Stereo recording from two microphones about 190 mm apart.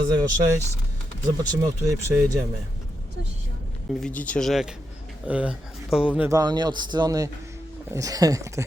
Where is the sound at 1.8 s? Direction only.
15° right (ahead or behind).